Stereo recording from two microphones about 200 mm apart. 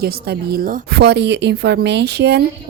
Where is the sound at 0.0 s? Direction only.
50° right (ahead or behind).